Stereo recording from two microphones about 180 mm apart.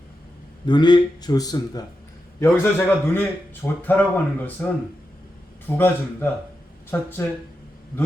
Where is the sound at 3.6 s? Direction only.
10° left (ahead or behind).